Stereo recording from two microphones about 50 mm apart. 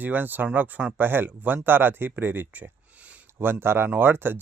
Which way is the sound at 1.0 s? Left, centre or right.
Right.